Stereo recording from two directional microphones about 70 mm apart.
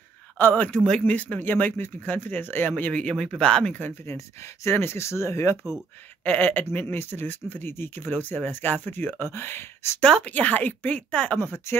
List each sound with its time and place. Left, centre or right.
0.4 s speech: left
0.7 s speech: centre
4.6 s speech: left
6.2 s speech: left
10.0 s speech: centre
10.3 s speech: left